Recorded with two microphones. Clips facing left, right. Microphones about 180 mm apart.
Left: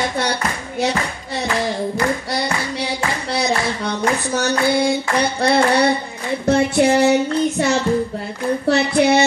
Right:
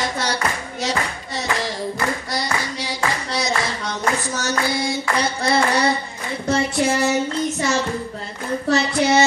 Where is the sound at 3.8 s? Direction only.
60° left (ahead or behind).